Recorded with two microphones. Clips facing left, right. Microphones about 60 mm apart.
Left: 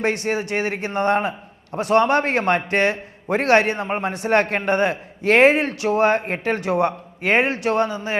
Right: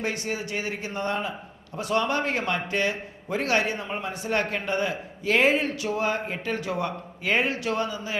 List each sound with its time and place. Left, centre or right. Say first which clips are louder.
0.0 s a man's voice: left 8 dB; left